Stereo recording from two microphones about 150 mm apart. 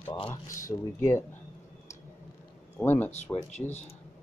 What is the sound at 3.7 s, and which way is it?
Speech, 45° left (ahead or behind).